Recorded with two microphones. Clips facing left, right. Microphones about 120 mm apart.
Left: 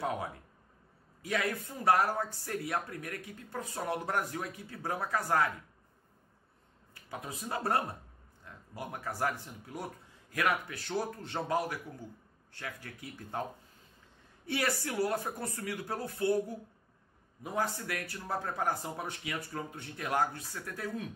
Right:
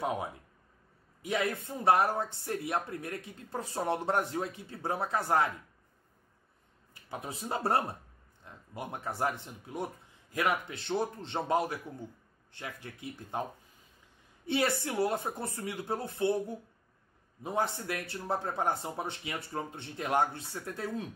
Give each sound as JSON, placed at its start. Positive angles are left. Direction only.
{"t": 0.0, "sound": "speech", "side_deg": -20}
{"t": 6.9, "sound": "speech", "side_deg": -25}